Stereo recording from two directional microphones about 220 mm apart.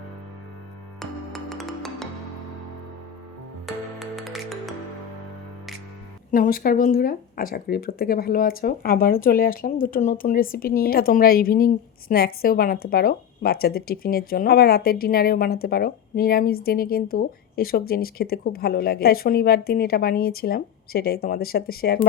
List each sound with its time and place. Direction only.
0.9 s music: centre (ahead or behind)
4.0 s music: centre (ahead or behind)
6.3 s speech: 40° left (ahead or behind)